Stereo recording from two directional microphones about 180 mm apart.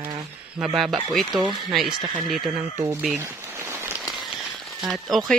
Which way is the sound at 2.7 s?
10° right (ahead or behind).